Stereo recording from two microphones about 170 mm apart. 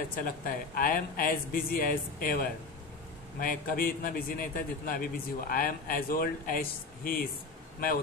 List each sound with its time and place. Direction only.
0.1 s a man's voice: 60° left (ahead or behind)